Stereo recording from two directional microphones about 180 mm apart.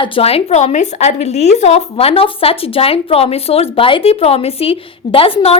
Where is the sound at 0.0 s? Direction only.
30° left (ahead or behind).